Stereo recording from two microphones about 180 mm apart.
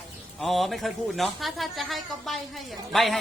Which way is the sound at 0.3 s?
Centre (ahead or behind).